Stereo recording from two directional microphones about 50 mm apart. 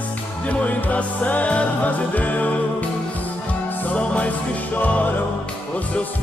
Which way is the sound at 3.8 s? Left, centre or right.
Left.